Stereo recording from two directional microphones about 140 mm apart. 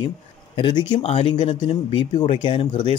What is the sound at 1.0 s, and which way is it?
Speech, 45° left (ahead or behind).